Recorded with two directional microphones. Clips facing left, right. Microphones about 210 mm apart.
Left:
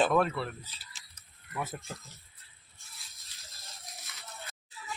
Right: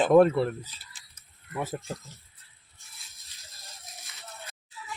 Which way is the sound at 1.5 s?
30° right (ahead or behind).